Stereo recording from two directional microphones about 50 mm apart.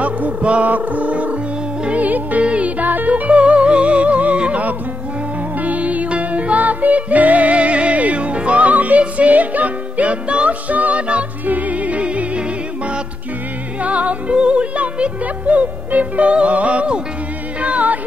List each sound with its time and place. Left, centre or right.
0.0 s speech: right
1.9 s music: right
13.8 s music: right